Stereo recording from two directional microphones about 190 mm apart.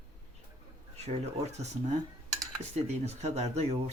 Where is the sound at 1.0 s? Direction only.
35° right (ahead or behind).